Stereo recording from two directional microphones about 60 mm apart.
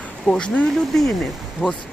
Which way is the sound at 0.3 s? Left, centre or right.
Centre.